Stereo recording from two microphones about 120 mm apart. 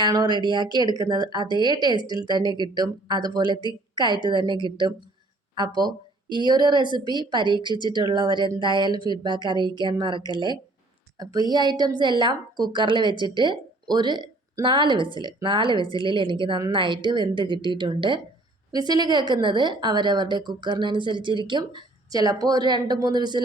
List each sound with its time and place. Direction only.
0.0 s a woman's voice: 35° right (ahead or behind)